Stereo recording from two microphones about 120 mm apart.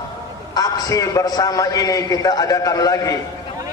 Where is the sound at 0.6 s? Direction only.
30° left (ahead or behind).